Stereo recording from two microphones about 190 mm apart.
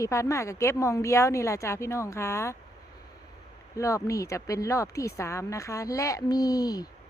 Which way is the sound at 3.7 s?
15° left (ahead or behind).